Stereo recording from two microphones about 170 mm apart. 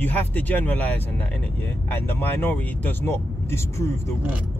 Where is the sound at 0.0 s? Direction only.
10° left (ahead or behind).